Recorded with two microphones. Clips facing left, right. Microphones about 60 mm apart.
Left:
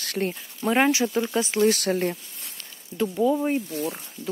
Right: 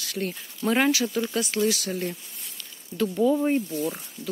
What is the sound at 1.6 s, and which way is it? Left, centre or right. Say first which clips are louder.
Speech: left 5 dB; left.